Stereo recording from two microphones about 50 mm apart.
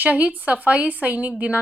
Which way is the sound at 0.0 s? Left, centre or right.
Right.